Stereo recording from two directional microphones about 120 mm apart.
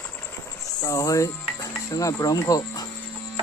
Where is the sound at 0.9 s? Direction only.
25° left (ahead or behind).